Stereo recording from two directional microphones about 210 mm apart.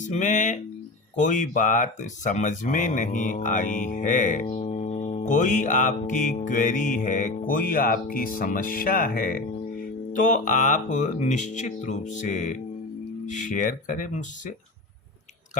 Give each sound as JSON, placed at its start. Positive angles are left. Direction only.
{"t": 0.0, "sound": "speech", "side_deg": 35}